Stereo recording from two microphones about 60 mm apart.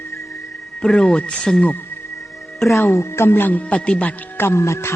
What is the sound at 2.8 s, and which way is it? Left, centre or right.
Speech, left.